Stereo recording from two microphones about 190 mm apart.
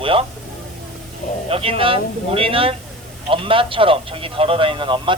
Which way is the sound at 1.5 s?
30° right (ahead or behind).